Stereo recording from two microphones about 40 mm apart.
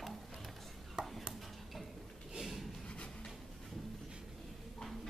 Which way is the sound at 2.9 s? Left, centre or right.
Left.